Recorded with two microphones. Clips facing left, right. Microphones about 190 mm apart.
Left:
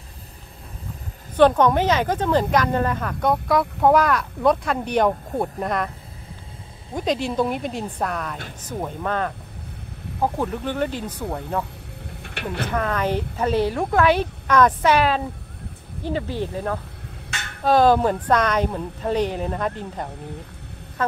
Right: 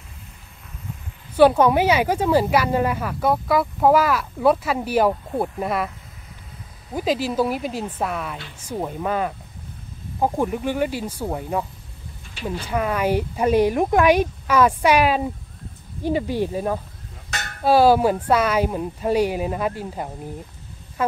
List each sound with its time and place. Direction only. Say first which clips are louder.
1.3 s a woman's voice: right 1 dB; 10° right (ahead or behind)
6.9 s a woman's voice: right 1 dB; 5° right (ahead or behind)
12.2 s vehicle: left 3 dB; 65° left (ahead or behind)
12.6 s speech: right 2 dB; 10° right (ahead or behind)
17.3 s music: right 4 dB; 40° right (ahead or behind)
17.6 s speech: right 1 dB; 10° right (ahead or behind)